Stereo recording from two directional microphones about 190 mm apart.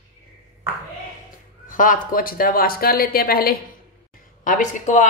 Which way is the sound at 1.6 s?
45° left (ahead or behind).